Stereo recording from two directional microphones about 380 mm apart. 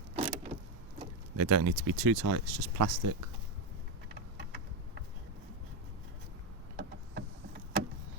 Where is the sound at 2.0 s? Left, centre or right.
Right.